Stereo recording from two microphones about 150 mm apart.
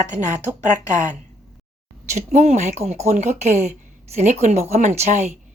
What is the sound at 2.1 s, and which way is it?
Speech, 50° right (ahead or behind).